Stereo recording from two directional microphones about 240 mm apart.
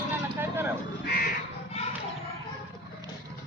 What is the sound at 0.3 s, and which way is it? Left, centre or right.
Vehicle, centre.